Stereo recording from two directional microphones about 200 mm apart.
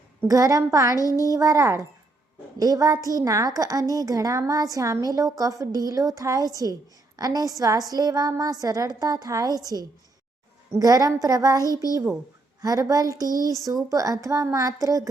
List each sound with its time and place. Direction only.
0.3 s a woman's voice: 15° right (ahead or behind)
10.8 s a woman's voice: 20° right (ahead or behind)